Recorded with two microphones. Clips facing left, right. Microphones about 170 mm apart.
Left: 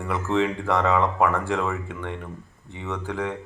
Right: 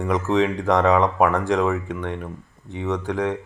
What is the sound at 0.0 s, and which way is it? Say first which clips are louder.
Speech: right 4 dB; 15° right (ahead or behind).